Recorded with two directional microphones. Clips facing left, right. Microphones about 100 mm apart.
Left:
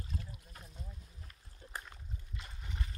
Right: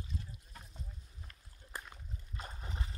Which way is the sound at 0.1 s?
65° left (ahead or behind).